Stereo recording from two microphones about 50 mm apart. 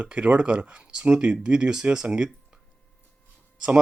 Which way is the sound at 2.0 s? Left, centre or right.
Right.